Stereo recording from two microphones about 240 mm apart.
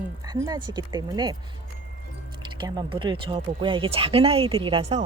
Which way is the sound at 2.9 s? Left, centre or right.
Right.